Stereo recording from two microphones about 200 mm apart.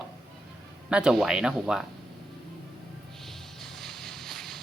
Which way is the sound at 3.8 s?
Centre (ahead or behind).